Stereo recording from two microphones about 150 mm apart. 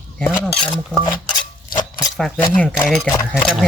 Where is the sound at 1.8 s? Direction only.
25° left (ahead or behind).